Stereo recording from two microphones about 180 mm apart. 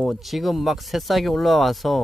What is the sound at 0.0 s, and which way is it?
Speech, centre (ahead or behind).